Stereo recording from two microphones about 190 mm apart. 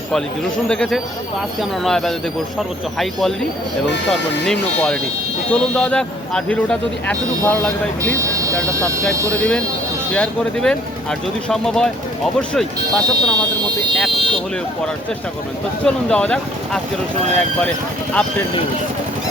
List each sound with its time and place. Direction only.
0.7 s speech: centre (ahead or behind)
8.2 s vehicle: 15° right (ahead or behind)
9.3 s speech: 5° left (ahead or behind)
14.2 s speech: 25° right (ahead or behind)
15.8 s speech: 5° left (ahead or behind)